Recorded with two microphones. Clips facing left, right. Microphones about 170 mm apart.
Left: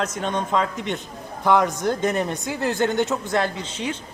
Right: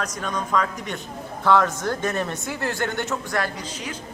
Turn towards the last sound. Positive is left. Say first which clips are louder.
# left 4 dB
turn(degrees=25)  # may be behind; listen again after turning